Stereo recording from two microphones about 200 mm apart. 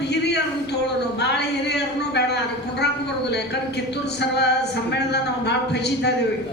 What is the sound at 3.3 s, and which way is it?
A woman's voice, 55° left (ahead or behind).